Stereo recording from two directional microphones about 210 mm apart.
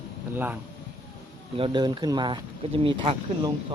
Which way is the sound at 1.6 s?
20° right (ahead or behind).